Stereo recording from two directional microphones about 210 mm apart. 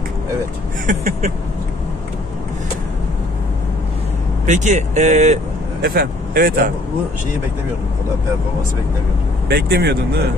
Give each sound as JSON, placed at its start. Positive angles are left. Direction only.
{"t": 0.8, "sound": "speech", "side_deg": -35}
{"t": 4.5, "sound": "speech", "side_deg": -35}
{"t": 5.8, "sound": "speech", "side_deg": -45}
{"t": 9.5, "sound": "speech", "side_deg": -50}